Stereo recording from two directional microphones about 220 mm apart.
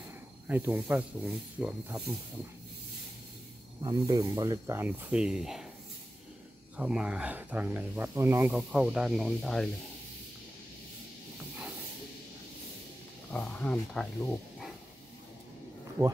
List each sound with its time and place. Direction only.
0.5 s speech: 10° right (ahead or behind)
3.8 s speech: 15° right (ahead or behind); by 5.7 s centre (ahead or behind)
6.8 s speech: 5° right (ahead or behind)
11.3 s hiss: 5° right (ahead or behind)
13.3 s speech: 5° left (ahead or behind)